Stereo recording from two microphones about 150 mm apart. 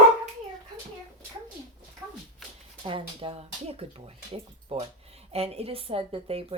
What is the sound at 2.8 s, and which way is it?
Speech, 35° right (ahead or behind).